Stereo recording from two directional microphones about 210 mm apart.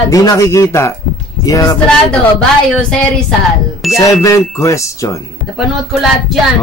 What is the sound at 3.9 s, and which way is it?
Speech, 15° left (ahead or behind).